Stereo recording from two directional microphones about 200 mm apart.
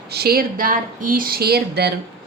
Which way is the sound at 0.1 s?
50° right (ahead or behind).